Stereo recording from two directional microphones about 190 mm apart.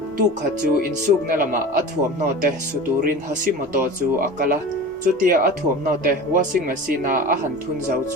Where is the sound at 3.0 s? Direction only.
45° right (ahead or behind).